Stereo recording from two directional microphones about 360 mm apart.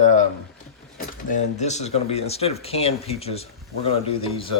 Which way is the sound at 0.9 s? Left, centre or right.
Centre.